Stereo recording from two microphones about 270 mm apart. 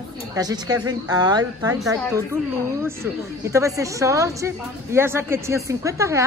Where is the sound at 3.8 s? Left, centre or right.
Centre.